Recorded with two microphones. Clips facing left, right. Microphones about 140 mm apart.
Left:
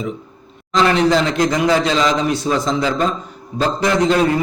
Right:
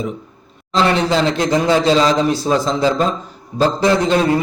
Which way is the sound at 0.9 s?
30° right (ahead or behind).